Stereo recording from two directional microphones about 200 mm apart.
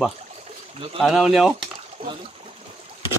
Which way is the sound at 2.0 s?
25° right (ahead or behind).